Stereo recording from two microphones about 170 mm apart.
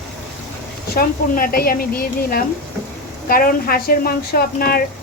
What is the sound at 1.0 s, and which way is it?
A woman's voice, 60° left (ahead or behind).